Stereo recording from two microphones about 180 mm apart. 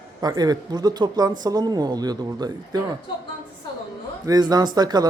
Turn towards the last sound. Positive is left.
turn(degrees=-20)  # may be behind; listen again after turning